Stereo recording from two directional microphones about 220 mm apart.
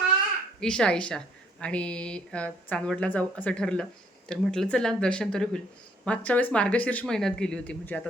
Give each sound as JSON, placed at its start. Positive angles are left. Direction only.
{"t": 0.6, "sound": "speech", "side_deg": 5}